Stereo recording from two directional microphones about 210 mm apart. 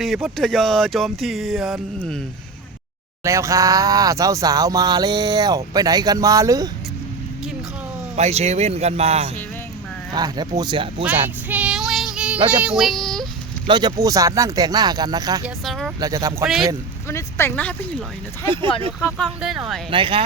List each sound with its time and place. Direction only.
0.0 s speech: centre (ahead or behind)
3.2 s speech: 15° right (ahead or behind)
8.1 s speech: 30° right (ahead or behind)
10.1 s speech: 20° right (ahead or behind)
11.0 s female singing: 5° right (ahead or behind)
12.5 s speech: 5° right (ahead or behind)
13.7 s speech: 20° right (ahead or behind)
15.4 s speech: centre (ahead or behind)
16.0 s speech: 15° right (ahead or behind)
17.1 s speech: 10° left (ahead or behind)
18.4 s speech: 25° right (ahead or behind)
18.9 s speech: centre (ahead or behind)
19.9 s speech: 25° right (ahead or behind)